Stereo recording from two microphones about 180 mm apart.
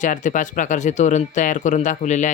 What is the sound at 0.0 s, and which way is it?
Speech, 45° left (ahead or behind).